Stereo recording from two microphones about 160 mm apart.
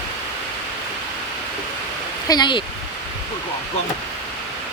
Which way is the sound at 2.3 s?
30° left (ahead or behind).